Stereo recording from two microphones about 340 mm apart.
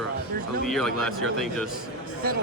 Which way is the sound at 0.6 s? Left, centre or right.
Centre.